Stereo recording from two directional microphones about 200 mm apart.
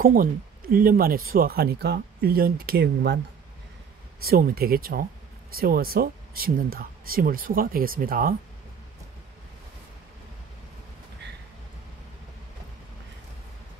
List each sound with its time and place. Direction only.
0.0 s speech: 45° right (ahead or behind)
4.2 s speech: 50° right (ahead or behind)